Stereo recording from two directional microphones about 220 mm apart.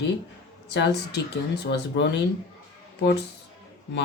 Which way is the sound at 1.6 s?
50° left (ahead or behind).